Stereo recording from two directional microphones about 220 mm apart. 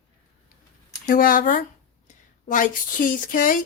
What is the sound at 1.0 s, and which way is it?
Speech, 40° left (ahead or behind).